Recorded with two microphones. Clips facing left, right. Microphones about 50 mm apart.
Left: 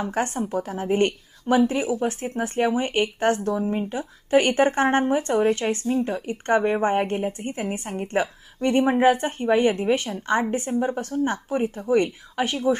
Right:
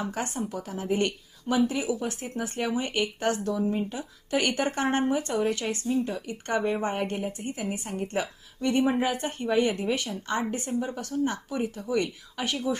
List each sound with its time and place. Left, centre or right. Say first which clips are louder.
0.0 s a woman's voice: left 6 dB; left